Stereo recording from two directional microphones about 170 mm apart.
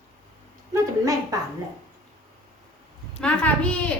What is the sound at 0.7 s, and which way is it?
Speech, 20° right (ahead or behind).